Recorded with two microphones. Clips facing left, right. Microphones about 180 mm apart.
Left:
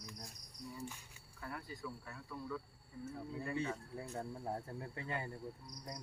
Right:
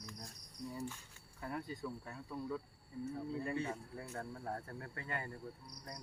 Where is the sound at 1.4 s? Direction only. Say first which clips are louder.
Right 4 dB; 25° right (ahead or behind).